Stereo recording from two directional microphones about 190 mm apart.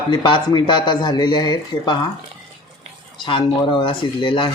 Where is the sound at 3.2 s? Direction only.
25° left (ahead or behind).